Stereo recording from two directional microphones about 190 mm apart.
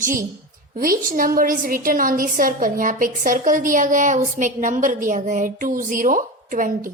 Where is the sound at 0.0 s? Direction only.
45° right (ahead or behind).